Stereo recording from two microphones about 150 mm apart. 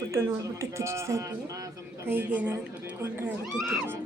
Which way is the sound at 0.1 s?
20° right (ahead or behind).